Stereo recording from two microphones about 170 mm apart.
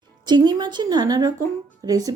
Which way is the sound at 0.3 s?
25° right (ahead or behind).